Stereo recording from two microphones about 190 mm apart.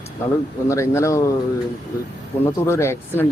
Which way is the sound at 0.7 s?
15° left (ahead or behind).